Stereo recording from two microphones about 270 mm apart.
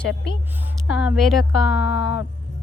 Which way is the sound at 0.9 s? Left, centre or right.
Left.